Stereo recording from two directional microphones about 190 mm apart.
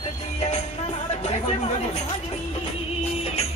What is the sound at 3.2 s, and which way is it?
Music, 35° left (ahead or behind).